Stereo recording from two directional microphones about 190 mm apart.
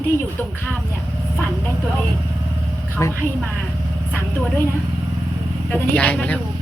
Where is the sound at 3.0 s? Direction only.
15° left (ahead or behind).